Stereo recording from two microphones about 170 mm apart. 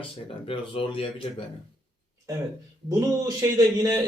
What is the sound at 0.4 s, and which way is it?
Speech, 30° left (ahead or behind).